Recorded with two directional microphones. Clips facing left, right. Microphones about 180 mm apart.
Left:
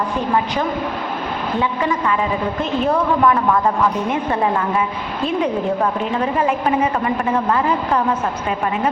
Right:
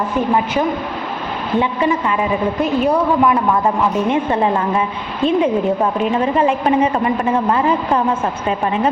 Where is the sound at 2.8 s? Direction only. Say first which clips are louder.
Right 1 dB; 15° right (ahead or behind).